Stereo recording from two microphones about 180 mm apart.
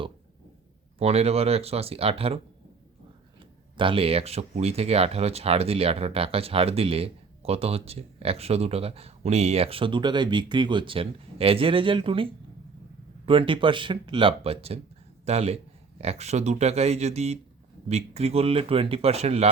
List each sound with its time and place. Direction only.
0.9 s speech: 35° right (ahead or behind)
3.8 s speech: 30° right (ahead or behind)